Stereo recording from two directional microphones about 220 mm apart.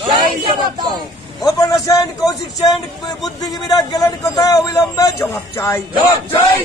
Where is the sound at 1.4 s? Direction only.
15° left (ahead or behind).